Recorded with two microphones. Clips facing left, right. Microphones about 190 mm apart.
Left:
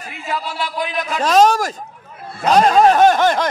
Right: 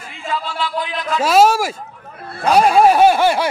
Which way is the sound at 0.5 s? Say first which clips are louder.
Right 1 dB; 45° left (ahead or behind).